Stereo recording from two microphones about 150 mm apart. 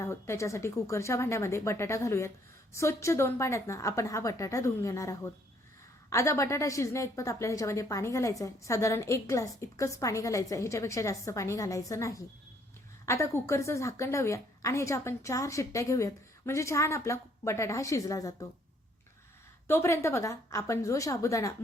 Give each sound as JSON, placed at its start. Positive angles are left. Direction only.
{"t": 0.0, "sound": "a woman's voice", "side_deg": 20}
{"t": 19.6, "sound": "a woman's voice", "side_deg": 15}